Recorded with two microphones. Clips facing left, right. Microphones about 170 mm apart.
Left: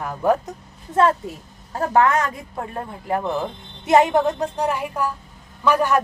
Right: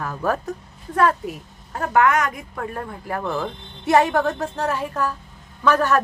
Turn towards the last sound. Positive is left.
turn(degrees=15)  # may be behind; listen again after turning